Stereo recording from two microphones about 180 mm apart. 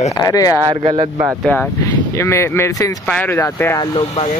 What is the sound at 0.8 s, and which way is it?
Speech, 30° right (ahead or behind).